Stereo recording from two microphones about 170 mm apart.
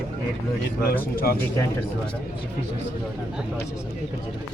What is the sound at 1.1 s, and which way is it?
Speech, 60° left (ahead or behind).